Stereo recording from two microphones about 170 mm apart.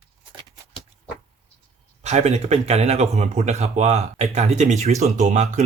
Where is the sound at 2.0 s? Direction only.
40° right (ahead or behind).